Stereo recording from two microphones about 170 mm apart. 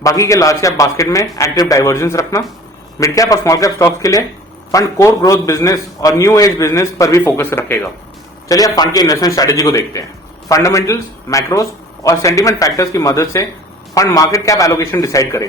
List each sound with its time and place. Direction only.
0.0 s a man's voice: 20° left (ahead or behind)